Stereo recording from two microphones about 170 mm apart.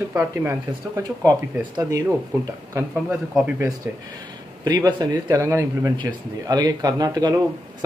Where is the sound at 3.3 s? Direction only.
10° right (ahead or behind).